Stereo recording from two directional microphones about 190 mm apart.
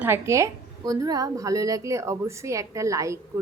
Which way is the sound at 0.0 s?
15° right (ahead or behind).